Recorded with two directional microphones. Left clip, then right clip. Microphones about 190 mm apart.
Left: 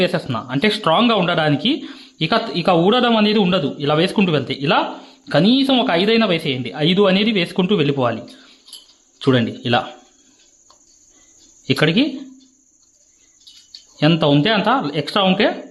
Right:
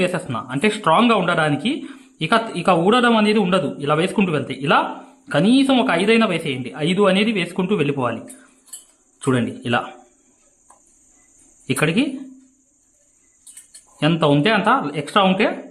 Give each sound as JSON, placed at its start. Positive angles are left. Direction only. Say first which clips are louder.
{"t": 0.0, "sound": "a man's voice", "louder": "left 2 dB", "side_deg": 15}
{"t": 11.6, "sound": "speech", "louder": "left 3 dB", "side_deg": 20}
{"t": 14.0, "sound": "a man's voice", "louder": "left 1 dB", "side_deg": 15}